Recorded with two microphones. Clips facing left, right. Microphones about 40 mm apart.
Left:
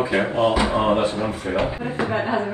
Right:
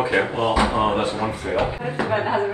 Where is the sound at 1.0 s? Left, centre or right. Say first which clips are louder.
Left 1 dB; right.